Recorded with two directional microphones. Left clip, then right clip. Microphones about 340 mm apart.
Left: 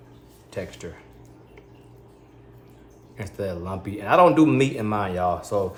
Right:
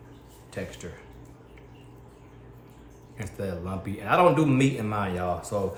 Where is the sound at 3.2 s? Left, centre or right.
Left.